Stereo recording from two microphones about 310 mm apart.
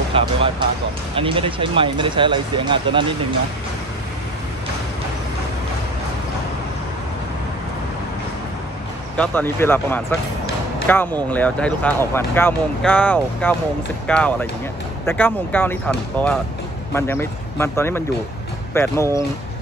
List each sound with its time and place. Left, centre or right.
0.1 s speech: centre
9.1 s speech: centre